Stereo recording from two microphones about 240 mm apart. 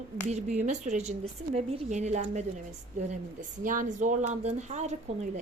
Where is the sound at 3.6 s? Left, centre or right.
Right.